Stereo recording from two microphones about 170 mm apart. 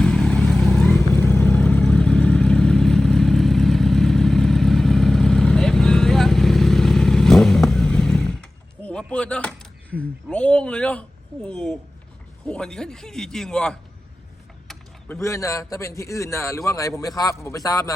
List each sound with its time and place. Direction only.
0.0 s vehicle: 5° left (ahead or behind)
10.0 s a sound: 5° left (ahead or behind)
12.5 s a man's voice: 5° left (ahead or behind); by 17.9 s 20° left (ahead or behind)